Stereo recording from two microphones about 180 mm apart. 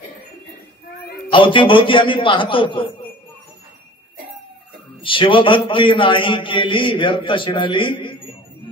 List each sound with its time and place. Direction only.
1.3 s a man's voice: 30° left (ahead or behind)
5.0 s a man's voice: 30° left (ahead or behind)